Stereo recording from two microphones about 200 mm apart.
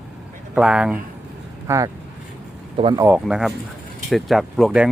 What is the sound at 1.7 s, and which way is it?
Speech, 15° right (ahead or behind).